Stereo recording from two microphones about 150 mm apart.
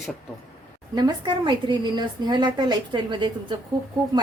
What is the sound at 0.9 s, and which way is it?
A woman's voice, 30° right (ahead or behind).